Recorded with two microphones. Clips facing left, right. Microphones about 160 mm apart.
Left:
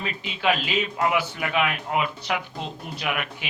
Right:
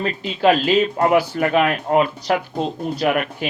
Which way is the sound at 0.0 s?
40° right (ahead or behind).